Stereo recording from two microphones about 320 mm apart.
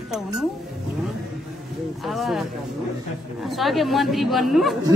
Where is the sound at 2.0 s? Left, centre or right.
Centre.